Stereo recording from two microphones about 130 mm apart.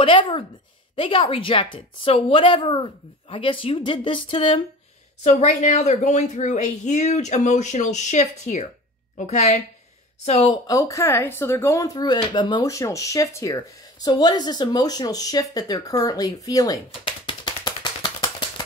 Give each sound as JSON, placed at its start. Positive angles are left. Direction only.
{"t": 0.0, "sound": "a woman's voice", "side_deg": 40}
{"t": 5.2, "sound": "speech", "side_deg": 65}
{"t": 10.2, "sound": "a woman's voice", "side_deg": 50}
{"t": 10.7, "sound": "speech", "side_deg": 25}
{"t": 16.0, "sound": "typewriter", "side_deg": 30}